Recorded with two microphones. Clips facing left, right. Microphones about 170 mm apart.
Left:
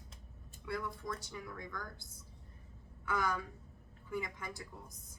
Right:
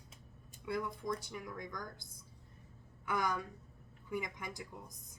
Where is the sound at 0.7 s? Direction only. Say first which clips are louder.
Right 3 dB; 20° right (ahead or behind).